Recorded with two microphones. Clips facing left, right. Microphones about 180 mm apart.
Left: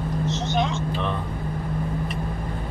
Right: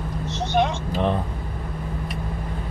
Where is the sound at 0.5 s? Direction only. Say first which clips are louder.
Right 6 dB; 45° right (ahead or behind).